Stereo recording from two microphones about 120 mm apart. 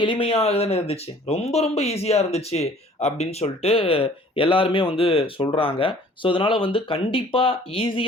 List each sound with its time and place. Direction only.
0.0 s speech: 45° left (ahead or behind)